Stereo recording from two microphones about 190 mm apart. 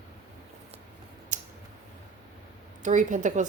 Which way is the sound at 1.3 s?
40° right (ahead or behind).